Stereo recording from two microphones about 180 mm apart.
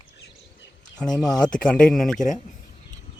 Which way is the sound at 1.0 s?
5° left (ahead or behind).